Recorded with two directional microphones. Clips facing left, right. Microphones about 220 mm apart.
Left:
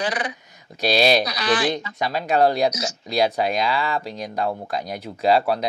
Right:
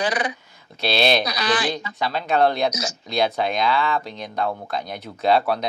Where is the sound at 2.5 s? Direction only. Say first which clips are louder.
Left 2 dB; 35° left (ahead or behind).